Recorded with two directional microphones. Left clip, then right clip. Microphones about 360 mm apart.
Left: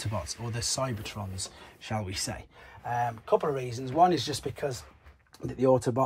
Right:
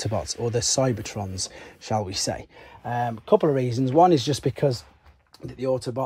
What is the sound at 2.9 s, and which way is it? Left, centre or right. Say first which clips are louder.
Speech: right 5 dB; right.